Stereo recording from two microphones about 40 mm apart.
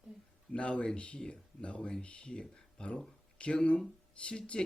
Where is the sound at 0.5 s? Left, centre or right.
Left.